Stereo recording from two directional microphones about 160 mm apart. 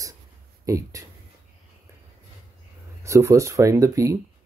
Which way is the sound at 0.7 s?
20° right (ahead or behind).